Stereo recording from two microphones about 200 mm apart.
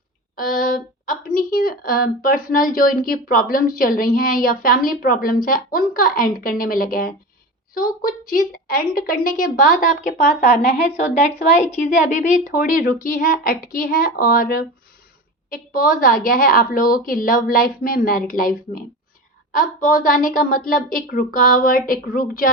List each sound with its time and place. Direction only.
0.3 s a woman's voice: 45° left (ahead or behind)